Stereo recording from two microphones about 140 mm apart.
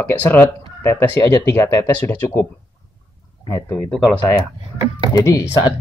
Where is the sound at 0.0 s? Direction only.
15° left (ahead or behind).